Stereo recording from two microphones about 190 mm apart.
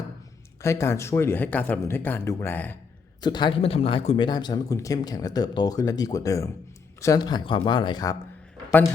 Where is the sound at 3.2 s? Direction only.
20° left (ahead or behind).